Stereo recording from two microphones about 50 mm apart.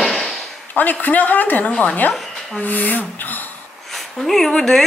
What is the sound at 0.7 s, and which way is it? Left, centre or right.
Speech, left.